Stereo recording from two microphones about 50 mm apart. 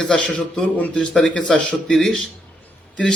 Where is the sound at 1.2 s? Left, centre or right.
Centre.